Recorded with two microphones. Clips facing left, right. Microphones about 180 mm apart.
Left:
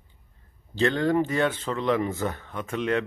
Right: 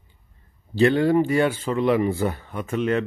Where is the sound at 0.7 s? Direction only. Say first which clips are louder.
Right 5 dB; 10° right (ahead or behind).